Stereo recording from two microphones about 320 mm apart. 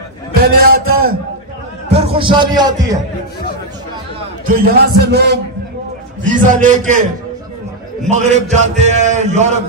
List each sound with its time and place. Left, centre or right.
0.4 s a man's voice: right
1.9 s a man's voice: centre
4.5 s a man's voice: right